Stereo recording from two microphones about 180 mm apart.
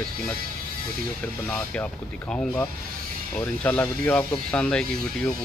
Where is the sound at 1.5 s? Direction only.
5° left (ahead or behind).